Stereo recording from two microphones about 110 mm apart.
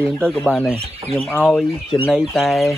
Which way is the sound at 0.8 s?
65° right (ahead or behind).